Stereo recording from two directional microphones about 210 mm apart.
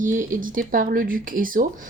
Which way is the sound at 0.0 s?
40° right (ahead or behind).